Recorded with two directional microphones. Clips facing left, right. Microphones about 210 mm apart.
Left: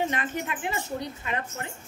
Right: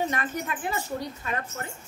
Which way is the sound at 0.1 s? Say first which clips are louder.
Even; 20° left (ahead or behind).